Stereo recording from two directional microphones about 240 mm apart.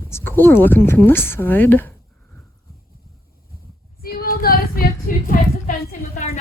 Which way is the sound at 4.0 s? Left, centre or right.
Left.